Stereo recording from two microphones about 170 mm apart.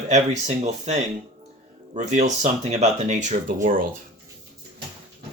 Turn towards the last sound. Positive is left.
turn(degrees=-55)  # may be behind; listen again after turning